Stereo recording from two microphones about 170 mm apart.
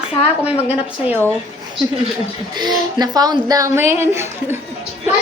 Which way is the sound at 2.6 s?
25° right (ahead or behind).